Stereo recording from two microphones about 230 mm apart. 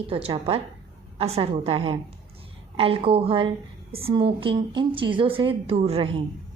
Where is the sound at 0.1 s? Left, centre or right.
Right.